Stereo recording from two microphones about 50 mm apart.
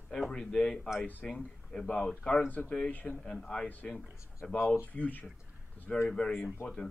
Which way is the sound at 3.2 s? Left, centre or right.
Centre.